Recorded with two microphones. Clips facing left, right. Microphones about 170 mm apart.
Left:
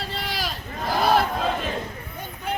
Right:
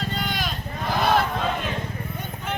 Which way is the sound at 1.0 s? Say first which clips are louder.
Left 1 dB; 35° left (ahead or behind).